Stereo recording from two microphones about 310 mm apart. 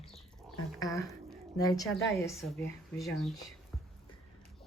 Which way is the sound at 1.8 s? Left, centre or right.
Centre.